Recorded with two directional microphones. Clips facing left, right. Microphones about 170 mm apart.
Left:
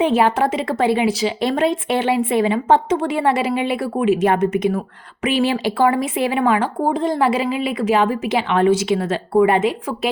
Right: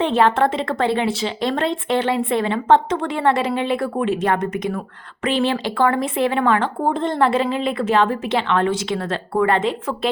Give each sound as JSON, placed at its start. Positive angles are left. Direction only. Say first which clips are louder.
{"t": 0.2, "sound": "speech", "louder": "even", "side_deg": 10}
{"t": 4.2, "sound": "speech", "louder": "left 4 dB", "side_deg": 25}
{"t": 5.2, "sound": "speech", "louder": "left 2 dB", "side_deg": 10}